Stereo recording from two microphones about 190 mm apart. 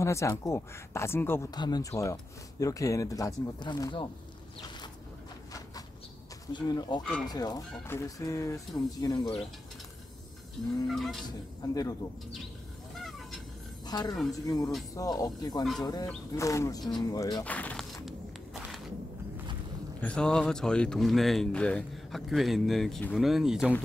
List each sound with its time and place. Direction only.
0.0 s speech: 15° left (ahead or behind)
6.4 s speech: 20° left (ahead or behind)
7.0 s a man's voice: 5° left (ahead or behind)
7.2 s speech: 20° left (ahead or behind)
10.9 s a man's voice: centre (ahead or behind)
11.2 s speech: 20° left (ahead or behind)
13.8 s a woman's voice: 20° left (ahead or behind)
16.9 s a sound: 20° left (ahead or behind); by 18.8 s centre (ahead or behind)
20.0 s a man's voice: 5° left (ahead or behind)